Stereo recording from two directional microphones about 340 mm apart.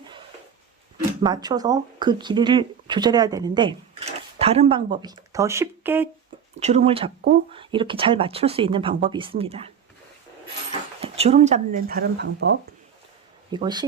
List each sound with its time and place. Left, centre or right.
1.2 s speech: centre
6.6 s speech: centre
13.5 s speech: centre